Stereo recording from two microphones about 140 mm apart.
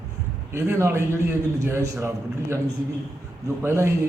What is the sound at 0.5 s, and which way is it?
A man's voice, 20° right (ahead or behind).